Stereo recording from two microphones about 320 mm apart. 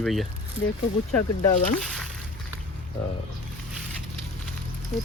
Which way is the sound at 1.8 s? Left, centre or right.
Centre.